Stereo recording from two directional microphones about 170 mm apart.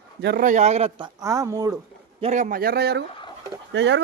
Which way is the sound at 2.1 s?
40° right (ahead or behind).